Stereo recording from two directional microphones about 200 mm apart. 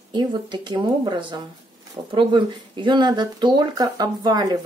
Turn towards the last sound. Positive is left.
turn(degrees=-20)  # may be behind; listen again after turning